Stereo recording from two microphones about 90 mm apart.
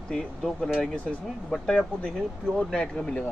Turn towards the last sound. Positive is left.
turn(degrees=10)  # may be behind; listen again after turning